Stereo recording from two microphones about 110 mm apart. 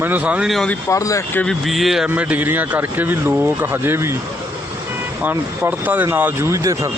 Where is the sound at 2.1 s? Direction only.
15° right (ahead or behind).